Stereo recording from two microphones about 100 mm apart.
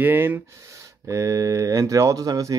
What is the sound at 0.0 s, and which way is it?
Speech, 20° right (ahead or behind).